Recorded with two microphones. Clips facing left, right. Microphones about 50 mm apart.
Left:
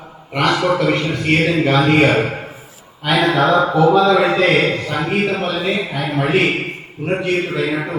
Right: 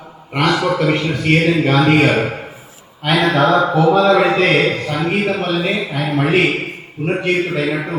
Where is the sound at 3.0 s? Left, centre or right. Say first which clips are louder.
Right 1 dB; right.